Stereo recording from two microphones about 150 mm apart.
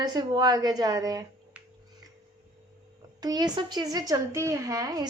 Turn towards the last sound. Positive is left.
turn(degrees=-25)  # may be behind; listen again after turning